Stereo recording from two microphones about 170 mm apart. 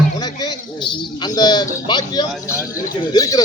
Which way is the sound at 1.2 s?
25° left (ahead or behind).